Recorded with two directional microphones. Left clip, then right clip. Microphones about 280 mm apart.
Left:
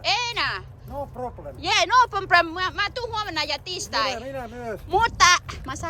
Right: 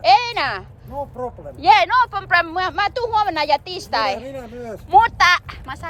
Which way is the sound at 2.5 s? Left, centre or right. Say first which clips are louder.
Right 5 dB; centre.